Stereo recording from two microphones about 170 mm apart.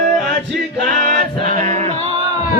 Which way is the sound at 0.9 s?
55° right (ahead or behind).